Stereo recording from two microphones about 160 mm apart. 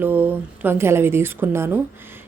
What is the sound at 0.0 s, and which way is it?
Speech, 10° right (ahead or behind).